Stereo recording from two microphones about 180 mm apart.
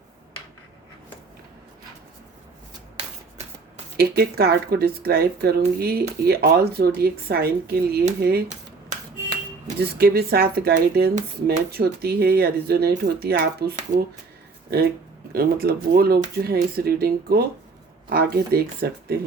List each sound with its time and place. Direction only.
3.9 s speech: 60° right (ahead or behind)
8.4 s finger snapping: 40° right (ahead or behind)
9.8 s speech: 60° right (ahead or behind)
15.3 s speech: 55° right (ahead or behind)